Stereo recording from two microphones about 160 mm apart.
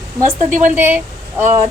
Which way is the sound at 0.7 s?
15° right (ahead or behind).